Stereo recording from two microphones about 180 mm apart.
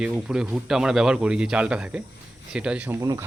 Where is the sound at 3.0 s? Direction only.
20° right (ahead or behind).